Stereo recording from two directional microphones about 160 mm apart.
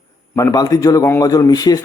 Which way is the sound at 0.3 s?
20° left (ahead or behind).